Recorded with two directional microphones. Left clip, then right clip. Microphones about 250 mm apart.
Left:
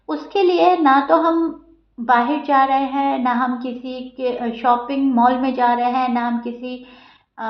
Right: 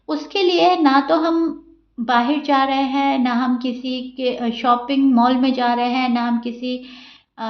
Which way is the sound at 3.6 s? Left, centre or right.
Right.